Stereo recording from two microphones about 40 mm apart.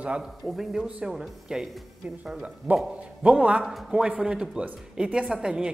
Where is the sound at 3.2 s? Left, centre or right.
Right.